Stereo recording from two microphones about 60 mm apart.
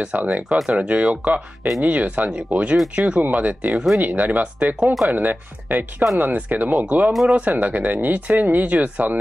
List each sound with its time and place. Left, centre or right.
0.0 s speech: right